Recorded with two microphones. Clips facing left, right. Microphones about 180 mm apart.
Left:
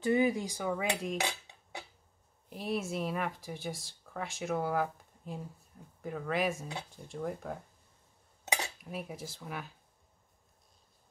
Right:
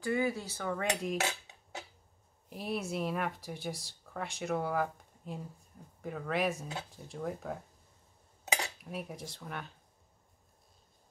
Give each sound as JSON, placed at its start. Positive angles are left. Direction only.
{"t": 0.0, "sound": "cutlery", "side_deg": 20}
{"t": 2.5, "sound": "speech", "side_deg": 0}
{"t": 8.5, "sound": "cutlery", "side_deg": 0}